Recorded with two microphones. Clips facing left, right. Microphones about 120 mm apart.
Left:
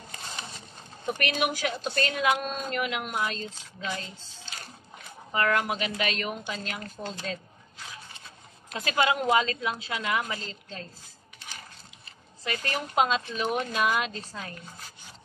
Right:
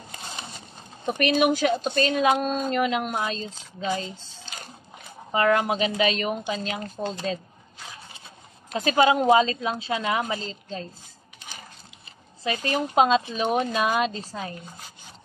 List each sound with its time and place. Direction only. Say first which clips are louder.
1.0 s a woman's voice: right 7 dB; 25° right (ahead or behind)
5.3 s a woman's voice: right 5 dB; 20° right (ahead or behind)
8.8 s a woman's voice: right 6 dB; 25° right (ahead or behind)
12.4 s a woman's voice: right 6 dB; 20° right (ahead or behind)
13.8 s a woman's voice: right 4 dB; 40° right (ahead or behind)
14.1 s a woman's voice: right 5 dB; 20° right (ahead or behind)